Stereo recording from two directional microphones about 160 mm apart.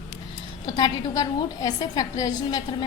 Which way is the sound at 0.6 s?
25° left (ahead or behind).